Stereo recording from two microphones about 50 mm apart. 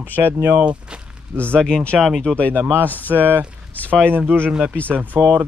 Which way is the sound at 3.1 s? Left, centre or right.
Right.